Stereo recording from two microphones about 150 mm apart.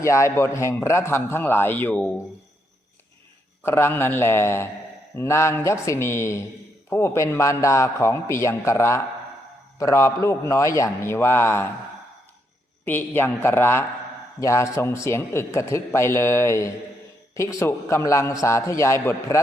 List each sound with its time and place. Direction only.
0.0 s a man's voice: 20° left (ahead or behind)
3.6 s a man's voice: 15° left (ahead or behind)
12.8 s a man's voice: 15° left (ahead or behind)